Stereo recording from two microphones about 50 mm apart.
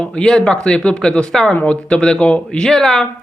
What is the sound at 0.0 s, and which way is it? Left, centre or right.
A man's voice, centre.